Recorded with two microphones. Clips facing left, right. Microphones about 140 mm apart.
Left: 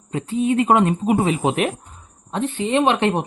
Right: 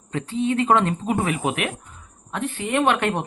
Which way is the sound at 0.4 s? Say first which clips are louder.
Left 3 dB; 20° left (ahead or behind).